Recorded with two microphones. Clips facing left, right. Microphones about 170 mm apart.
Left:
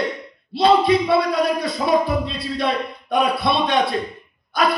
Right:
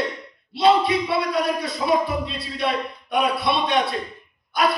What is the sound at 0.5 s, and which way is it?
Speech, 35° left (ahead or behind).